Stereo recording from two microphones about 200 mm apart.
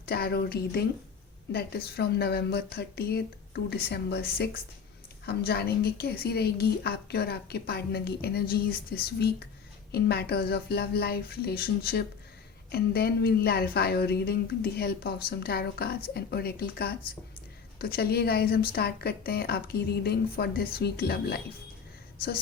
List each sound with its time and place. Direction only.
0.0 s a woman's voice: 50° left (ahead or behind)